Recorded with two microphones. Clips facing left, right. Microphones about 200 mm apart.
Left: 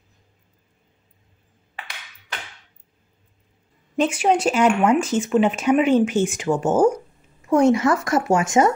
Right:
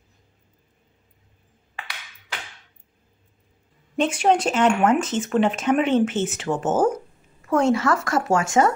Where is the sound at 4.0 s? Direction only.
5° left (ahead or behind).